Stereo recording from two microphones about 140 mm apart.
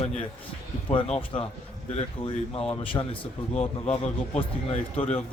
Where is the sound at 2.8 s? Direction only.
40° left (ahead or behind).